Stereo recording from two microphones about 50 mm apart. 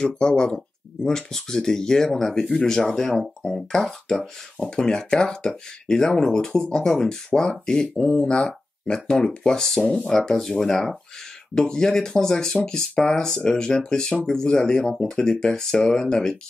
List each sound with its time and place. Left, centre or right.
0.0 s speech: centre